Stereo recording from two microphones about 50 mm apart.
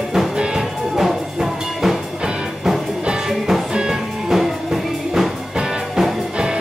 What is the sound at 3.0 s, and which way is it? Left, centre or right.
Music, centre.